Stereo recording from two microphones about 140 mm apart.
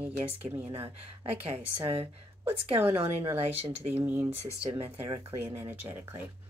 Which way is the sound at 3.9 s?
15° right (ahead or behind).